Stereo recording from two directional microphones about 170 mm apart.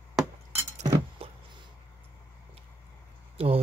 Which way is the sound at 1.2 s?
35° right (ahead or behind).